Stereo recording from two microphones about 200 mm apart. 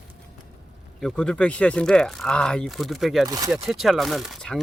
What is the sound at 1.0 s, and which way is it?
Speech, 5° left (ahead or behind).